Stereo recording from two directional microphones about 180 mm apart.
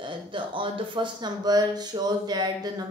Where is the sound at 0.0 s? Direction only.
25° right (ahead or behind).